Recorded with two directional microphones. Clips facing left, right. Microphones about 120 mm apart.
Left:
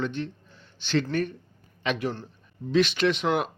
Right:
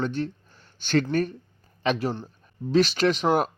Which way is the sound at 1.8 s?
40° right (ahead or behind).